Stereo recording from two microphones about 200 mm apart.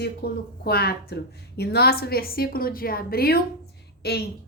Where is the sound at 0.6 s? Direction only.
50° left (ahead or behind).